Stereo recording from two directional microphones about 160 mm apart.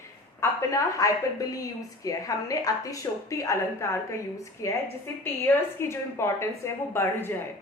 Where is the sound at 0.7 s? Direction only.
20° left (ahead or behind).